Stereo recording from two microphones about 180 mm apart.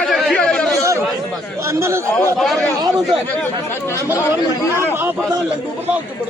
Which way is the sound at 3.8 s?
15° left (ahead or behind).